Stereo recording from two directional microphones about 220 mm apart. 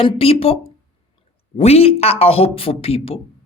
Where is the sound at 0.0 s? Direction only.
25° left (ahead or behind).